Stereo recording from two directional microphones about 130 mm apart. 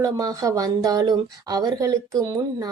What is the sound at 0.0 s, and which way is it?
A woman's voice, 25° right (ahead or behind).